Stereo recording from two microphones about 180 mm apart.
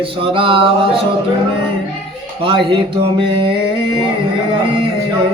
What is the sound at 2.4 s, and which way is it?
Music, 30° right (ahead or behind).